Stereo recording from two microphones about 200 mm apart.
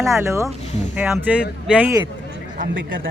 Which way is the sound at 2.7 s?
65° right (ahead or behind).